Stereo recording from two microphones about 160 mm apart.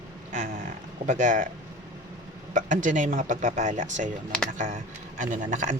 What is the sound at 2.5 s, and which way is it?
Speech, 50° right (ahead or behind).